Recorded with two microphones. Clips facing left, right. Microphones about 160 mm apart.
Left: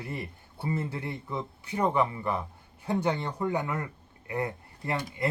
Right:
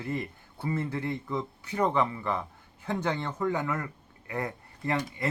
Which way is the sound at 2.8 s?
15° left (ahead or behind).